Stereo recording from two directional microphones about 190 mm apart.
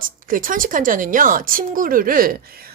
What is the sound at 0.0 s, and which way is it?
Speech, 45° right (ahead or behind).